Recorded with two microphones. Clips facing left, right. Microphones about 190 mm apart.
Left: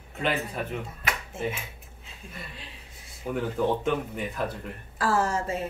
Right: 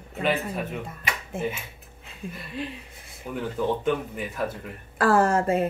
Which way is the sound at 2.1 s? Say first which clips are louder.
Right 4 dB; 55° right (ahead or behind).